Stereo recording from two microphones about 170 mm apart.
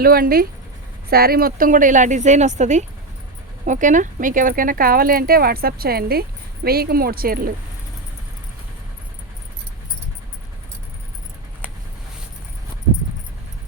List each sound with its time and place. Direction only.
0.0 s speech: 60° right (ahead or behind)